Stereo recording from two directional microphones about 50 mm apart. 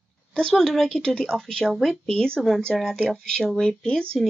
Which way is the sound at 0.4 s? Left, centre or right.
Centre.